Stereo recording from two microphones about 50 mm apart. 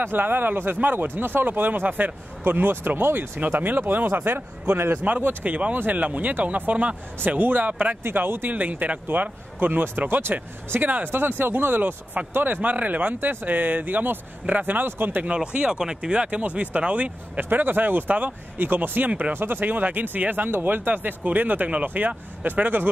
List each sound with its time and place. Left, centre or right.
0.0 s speech: right
3.3 s speech: right
4.9 s speech: right
8.0 s speech: right
8.5 s speech: right
15.2 s speech: right
17.4 s speech: right
19.3 s speech: right